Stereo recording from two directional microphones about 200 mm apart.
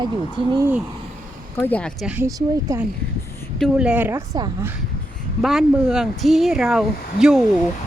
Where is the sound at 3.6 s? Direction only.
5° right (ahead or behind).